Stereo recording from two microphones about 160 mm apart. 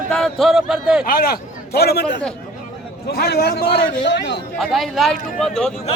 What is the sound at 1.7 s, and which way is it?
A man's voice, 85° left.